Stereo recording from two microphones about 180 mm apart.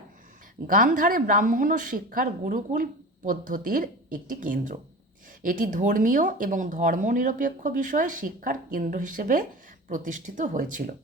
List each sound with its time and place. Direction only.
0.7 s speech: 50° right (ahead or behind)